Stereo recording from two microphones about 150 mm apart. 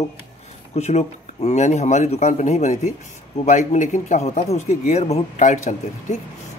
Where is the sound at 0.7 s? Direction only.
50° left (ahead or behind).